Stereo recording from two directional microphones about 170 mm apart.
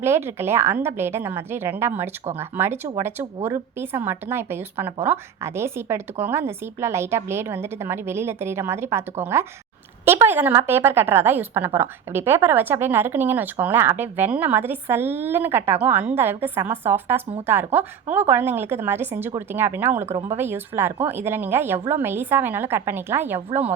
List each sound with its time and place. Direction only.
0.0 s a woman's voice: 15° right (ahead or behind)
20.1 s speech: 40° right (ahead or behind)
20.3 s a woman's voice: 15° right (ahead or behind)